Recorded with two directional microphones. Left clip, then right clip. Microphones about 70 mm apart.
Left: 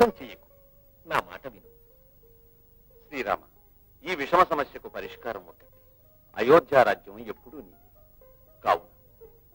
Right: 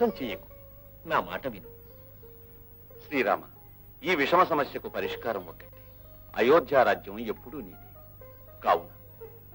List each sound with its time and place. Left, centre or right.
0.1 s a man's voice: right
3.0 s a man's voice: right
8.5 s dog: right